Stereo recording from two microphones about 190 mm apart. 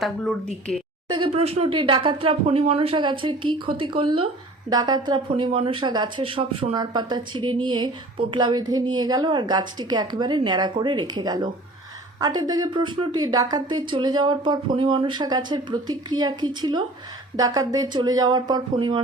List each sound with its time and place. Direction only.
0.7 s a woman's voice: 5° left (ahead or behind)
1.0 s speech: 25° right (ahead or behind)